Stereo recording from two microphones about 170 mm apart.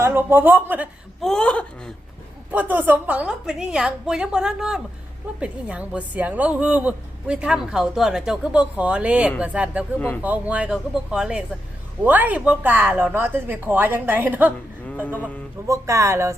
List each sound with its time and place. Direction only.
0.0 s a woman's voice: 15° right (ahead or behind)
1.2 s a woman's voice: 5° left (ahead or behind)
2.5 s a woman's voice: 10° right (ahead or behind)
15.0 s speech: 10° left (ahead or behind)
15.6 s a woman's voice: 20° right (ahead or behind)